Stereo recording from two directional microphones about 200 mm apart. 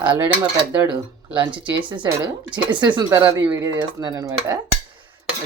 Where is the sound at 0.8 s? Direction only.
25° right (ahead or behind).